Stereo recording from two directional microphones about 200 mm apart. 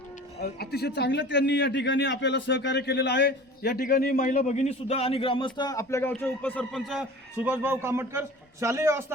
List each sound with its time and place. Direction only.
0.3 s a man's voice: 55° left (ahead or behind); by 9.1 s 15° right (ahead or behind)